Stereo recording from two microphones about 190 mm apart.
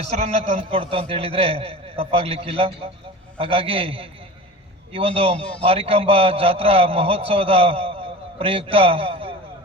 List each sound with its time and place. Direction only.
0.1 s a man's voice: 35° right (ahead or behind)